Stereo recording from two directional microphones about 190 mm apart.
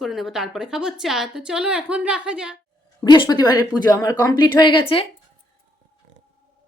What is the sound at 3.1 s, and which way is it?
A woman's voice, 25° left (ahead or behind).